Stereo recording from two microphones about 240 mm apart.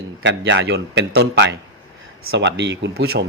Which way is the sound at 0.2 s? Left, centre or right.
Right.